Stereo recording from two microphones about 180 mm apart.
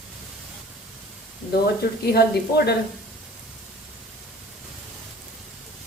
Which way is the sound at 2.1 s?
60° left (ahead or behind).